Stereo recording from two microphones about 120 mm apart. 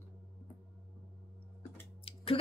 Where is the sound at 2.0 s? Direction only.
50° left (ahead or behind).